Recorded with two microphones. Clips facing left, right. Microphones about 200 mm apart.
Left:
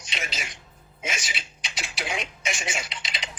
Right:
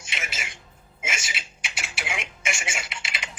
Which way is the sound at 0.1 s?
20° left (ahead or behind).